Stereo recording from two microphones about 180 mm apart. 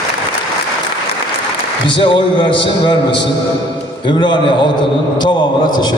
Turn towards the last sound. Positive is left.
turn(degrees=25)  # may be behind; listen again after turning